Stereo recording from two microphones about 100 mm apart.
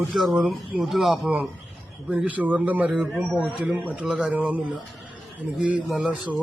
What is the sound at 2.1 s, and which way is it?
Speech, 15° right (ahead or behind).